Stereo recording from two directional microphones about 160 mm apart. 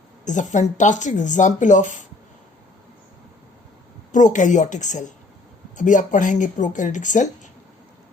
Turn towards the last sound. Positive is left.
turn(degrees=50)  # may be behind; listen again after turning